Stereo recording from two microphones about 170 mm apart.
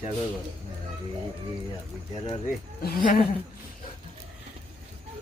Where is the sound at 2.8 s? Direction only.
50° left (ahead or behind).